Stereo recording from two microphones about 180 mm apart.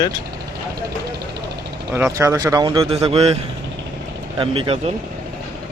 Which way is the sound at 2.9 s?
35° right (ahead or behind).